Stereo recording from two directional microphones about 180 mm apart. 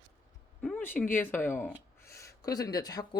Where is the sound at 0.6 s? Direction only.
10° left (ahead or behind).